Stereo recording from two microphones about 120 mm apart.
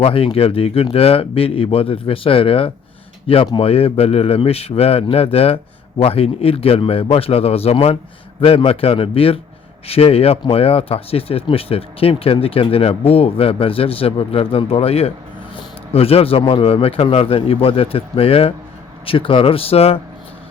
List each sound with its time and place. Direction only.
0.0 s speech: 50° left (ahead or behind)